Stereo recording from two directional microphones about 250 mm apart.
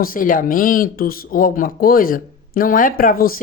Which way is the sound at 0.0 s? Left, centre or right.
Left.